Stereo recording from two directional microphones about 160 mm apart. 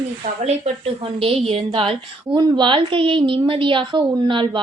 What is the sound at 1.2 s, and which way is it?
A woman's voice, 40° right (ahead or behind).